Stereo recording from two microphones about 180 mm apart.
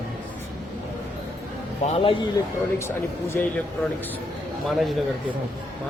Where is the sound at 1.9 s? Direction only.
30° left (ahead or behind).